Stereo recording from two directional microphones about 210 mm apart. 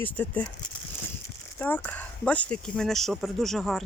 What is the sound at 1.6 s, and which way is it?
Speech, 10° left (ahead or behind).